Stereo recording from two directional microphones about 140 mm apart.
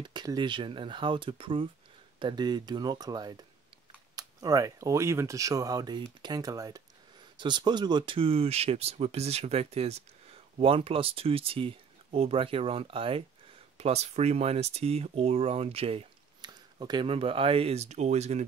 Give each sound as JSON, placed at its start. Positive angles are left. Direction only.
{"t": 0.0, "sound": "speech", "side_deg": -30}
{"t": 16.3, "sound": "speech", "side_deg": -30}